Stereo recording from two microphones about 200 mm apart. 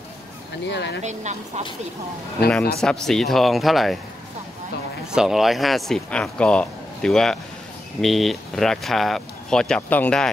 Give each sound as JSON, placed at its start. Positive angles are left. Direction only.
{"t": 0.7, "sound": "speech", "side_deg": 60}
{"t": 1.0, "sound": "speech", "side_deg": -35}
{"t": 2.8, "sound": "speech", "side_deg": 5}
{"t": 5.1, "sound": "speech", "side_deg": 0}